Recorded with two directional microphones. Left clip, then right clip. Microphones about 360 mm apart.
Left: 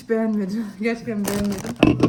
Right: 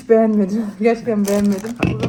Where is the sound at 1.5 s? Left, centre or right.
Left.